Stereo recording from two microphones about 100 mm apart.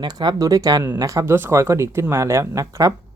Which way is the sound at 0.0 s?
45° right (ahead or behind).